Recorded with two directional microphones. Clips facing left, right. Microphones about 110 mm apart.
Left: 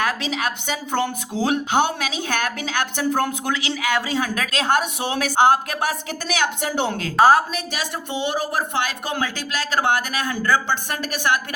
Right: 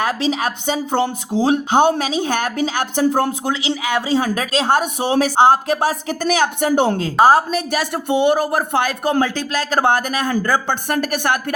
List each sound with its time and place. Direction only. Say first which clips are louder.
0.0 s a woman's voice: right 4 dB; 30° right (ahead or behind)
6.2 s speech: right 6 dB; 45° right (ahead or behind)
7.0 s a woman's voice: even; 25° right (ahead or behind)
7.5 s speech: right 7 dB; 50° right (ahead or behind)